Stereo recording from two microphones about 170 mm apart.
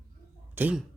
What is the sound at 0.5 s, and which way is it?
Speech, 10° right (ahead or behind).